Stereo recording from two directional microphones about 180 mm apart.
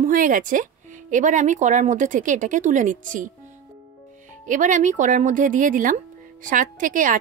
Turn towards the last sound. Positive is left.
turn(degrees=-50)  # may be behind; listen again after turning